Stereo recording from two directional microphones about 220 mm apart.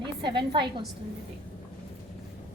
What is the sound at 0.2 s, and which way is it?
Speech, 20° right (ahead or behind).